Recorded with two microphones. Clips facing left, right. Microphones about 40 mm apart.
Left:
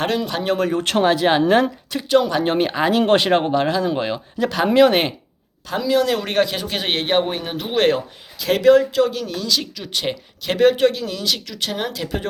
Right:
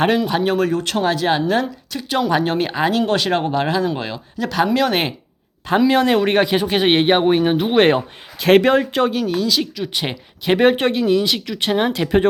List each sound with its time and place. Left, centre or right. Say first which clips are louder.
0.3 s speech: right 4 dB; centre
0.8 s speech: left 2 dB; left
1.0 s speech: left 2 dB; centre
1.4 s speech: left 3 dB; left
2.0 s speech: left 1 dB; centre
2.4 s speech: even; centre
3.2 s speech: left 2 dB; centre
3.5 s speech: even; centre
3.8 s speech: left 2 dB; centre
4.9 s speech: left 1 dB; centre
5.6 s speech: right 4 dB; right
6.1 s speech: right 4 dB; centre
8.4 s speech: right 1 dB; right
9.1 s speech: right 4 dB; centre; by 12.2 s right